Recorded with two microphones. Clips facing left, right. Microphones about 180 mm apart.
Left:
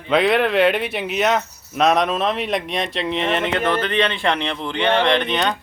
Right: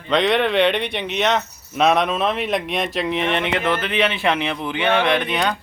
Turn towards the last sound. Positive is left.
turn(degrees=0)  # may be behind; listen again after turning